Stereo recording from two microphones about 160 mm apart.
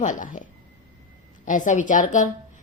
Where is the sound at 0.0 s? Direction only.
55° left (ahead or behind).